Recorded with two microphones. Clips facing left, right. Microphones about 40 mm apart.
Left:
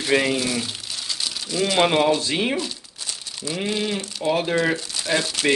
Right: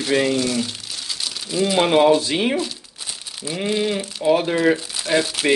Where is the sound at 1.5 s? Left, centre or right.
Centre.